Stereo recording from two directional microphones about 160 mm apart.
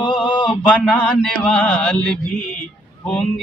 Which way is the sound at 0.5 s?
5° left (ahead or behind).